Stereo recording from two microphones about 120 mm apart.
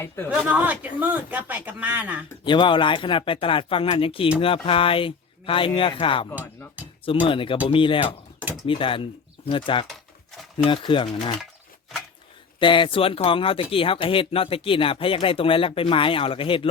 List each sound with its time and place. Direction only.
0.3 s speech: 10° right (ahead or behind)
2.4 s speech: 40° left (ahead or behind)
12.5 s speech: 45° left (ahead or behind)